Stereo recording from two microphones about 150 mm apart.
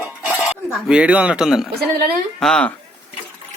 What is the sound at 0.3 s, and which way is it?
A man's voice, 5° right (ahead or behind).